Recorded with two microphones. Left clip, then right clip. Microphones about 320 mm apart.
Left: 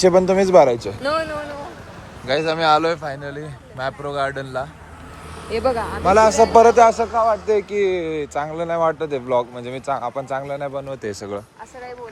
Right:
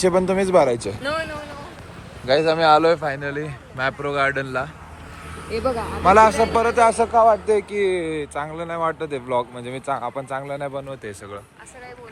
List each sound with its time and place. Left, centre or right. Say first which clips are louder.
0.0 s speech: left 4 dB; centre
1.0 s a sound: left 7 dB; left
2.2 s a man's voice: right 2 dB; centre
5.5 s speech: left 3 dB; centre
5.7 s speech: right 2 dB; centre
9.8 s a man's voice: left 2 dB; centre
10.2 s speech: left 2 dB; centre